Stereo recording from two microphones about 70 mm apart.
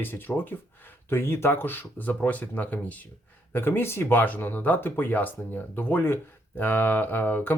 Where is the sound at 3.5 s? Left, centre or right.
Left.